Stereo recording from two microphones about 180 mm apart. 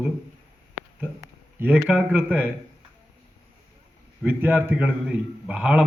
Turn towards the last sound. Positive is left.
turn(degrees=-5)  # may be behind; listen again after turning